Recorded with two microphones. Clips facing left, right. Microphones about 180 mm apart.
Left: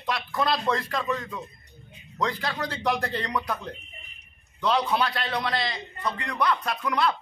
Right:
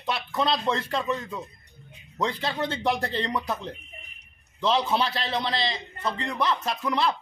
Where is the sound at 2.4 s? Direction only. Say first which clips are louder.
Right 2 dB; 25° right (ahead or behind).